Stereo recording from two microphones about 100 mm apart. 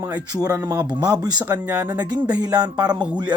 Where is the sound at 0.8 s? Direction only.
40° right (ahead or behind).